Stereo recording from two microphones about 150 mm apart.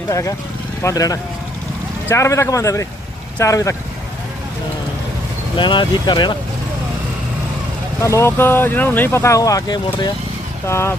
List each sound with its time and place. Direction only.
0.1 s speech: 20° left (ahead or behind)
5.5 s speech: 30° left (ahead or behind)
8.0 s speech: 20° left (ahead or behind)
10.7 s speech: 15° left (ahead or behind)